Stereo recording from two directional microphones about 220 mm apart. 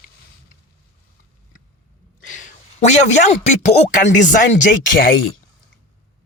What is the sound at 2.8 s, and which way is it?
Speech, 30° left (ahead or behind).